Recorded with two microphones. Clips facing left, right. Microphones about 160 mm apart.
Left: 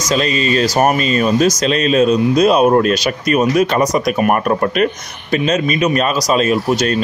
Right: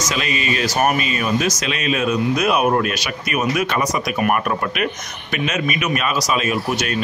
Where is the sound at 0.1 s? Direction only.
35° left (ahead or behind).